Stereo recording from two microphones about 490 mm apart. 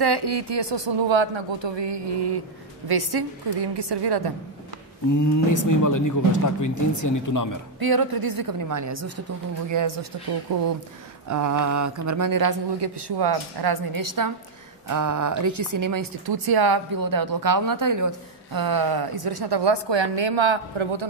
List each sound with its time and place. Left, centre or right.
0.0 s speech: right
5.1 s speech: left
7.8 s speech: right